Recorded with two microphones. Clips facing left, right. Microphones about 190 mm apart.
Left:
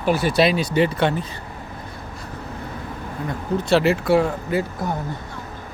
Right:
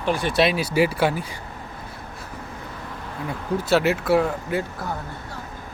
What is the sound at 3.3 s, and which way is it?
Speech, 5° right (ahead or behind).